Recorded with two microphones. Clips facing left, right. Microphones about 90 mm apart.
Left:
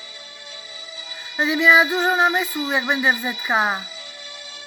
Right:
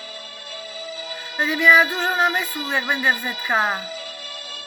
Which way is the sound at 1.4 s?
15° left (ahead or behind).